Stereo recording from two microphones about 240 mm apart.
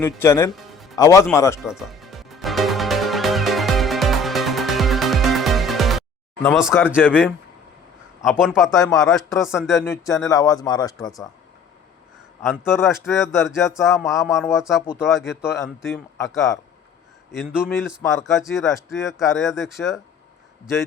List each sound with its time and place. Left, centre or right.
0.0 s speech: centre
0.5 s music: centre
0.9 s speech: centre
1.6 s music: centre
6.4 s speech: centre
9.7 s speech: centre
12.4 s speech: centre
15.9 s speech: centre
17.3 s speech: centre